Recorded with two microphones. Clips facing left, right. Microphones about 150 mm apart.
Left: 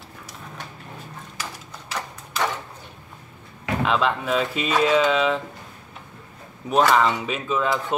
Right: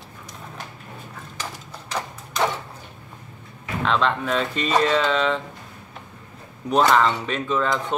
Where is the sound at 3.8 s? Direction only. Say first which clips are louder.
Right 1 dB; 5° left (ahead or behind).